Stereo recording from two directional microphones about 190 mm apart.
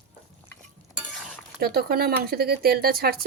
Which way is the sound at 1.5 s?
55° right (ahead or behind).